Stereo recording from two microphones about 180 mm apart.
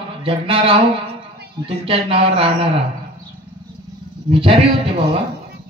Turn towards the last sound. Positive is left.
turn(degrees=-35)  # may be behind; listen again after turning